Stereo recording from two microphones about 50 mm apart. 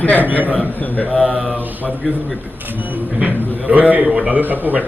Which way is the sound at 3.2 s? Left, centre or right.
Right.